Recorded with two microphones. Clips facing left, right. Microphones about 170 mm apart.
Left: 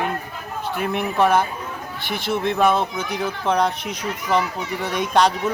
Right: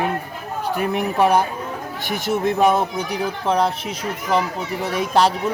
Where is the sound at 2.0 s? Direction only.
45° right (ahead or behind).